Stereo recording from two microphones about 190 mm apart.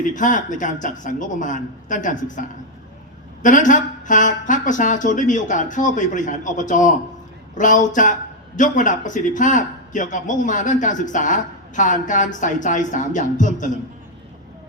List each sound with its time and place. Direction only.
0.0 s a man's voice: 40° left (ahead or behind)